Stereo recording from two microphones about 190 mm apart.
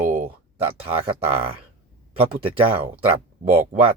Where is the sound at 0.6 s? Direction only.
30° right (ahead or behind).